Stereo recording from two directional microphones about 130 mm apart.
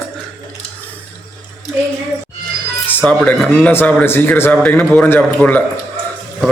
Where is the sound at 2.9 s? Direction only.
10° left (ahead or behind).